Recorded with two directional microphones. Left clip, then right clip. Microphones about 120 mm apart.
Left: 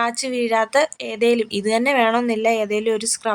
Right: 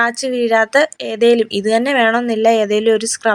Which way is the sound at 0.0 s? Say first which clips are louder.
Right 5 dB; 20° right (ahead or behind).